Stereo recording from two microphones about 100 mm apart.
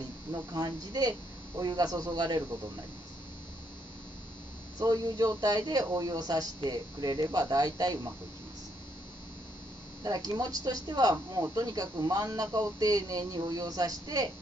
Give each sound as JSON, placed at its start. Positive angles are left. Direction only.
{"t": 0.3, "sound": "speech", "side_deg": -40}
{"t": 4.7, "sound": "speech", "side_deg": -40}
{"t": 10.0, "sound": "speech", "side_deg": -40}